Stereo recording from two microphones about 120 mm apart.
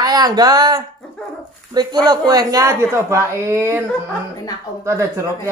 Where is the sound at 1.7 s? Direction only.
35° right (ahead or behind).